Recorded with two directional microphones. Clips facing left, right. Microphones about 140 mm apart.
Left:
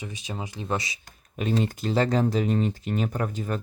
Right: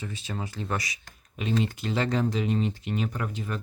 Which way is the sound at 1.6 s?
40° left (ahead or behind).